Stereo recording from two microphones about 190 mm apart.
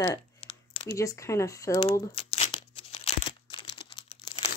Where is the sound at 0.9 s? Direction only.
15° left (ahead or behind).